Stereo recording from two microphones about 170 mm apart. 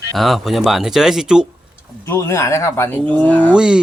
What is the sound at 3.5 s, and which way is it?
Speech, 5° right (ahead or behind).